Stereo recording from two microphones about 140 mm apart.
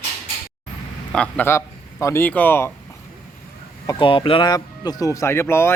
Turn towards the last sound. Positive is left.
turn(degrees=20)  # may be behind; listen again after turning